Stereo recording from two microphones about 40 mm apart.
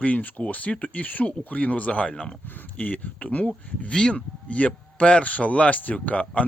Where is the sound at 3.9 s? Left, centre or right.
Left.